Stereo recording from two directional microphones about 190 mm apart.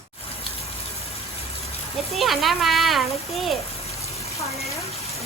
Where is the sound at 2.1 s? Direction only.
Centre (ahead or behind).